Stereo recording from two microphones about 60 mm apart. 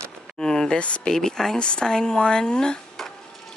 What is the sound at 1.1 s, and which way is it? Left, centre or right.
Speech, centre.